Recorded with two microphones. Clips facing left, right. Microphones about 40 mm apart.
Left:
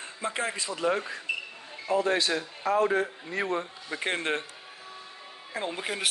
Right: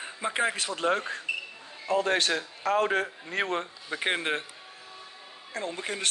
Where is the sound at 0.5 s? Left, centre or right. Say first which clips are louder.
Right 1 dB; right.